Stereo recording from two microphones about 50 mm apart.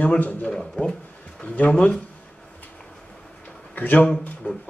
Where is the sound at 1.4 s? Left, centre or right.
Left.